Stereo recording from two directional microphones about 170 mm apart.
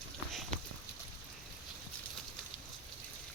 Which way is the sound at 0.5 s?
45° right (ahead or behind).